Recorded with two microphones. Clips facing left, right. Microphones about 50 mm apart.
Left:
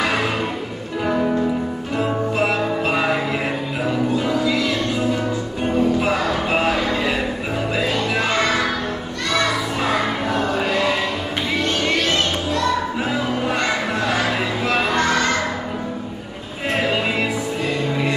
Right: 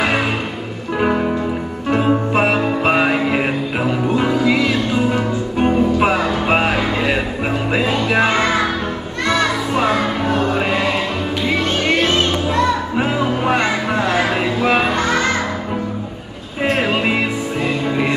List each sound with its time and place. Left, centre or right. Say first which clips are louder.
1.9 s music: right 7 dB; right
4.5 s music: right 4 dB; right
8.2 s music: right 4 dB; right
12.0 s music: right 4 dB; right
14.7 s music: right 1 dB; right